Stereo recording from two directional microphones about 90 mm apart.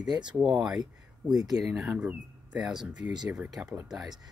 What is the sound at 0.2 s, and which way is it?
Speech, 10° right (ahead or behind).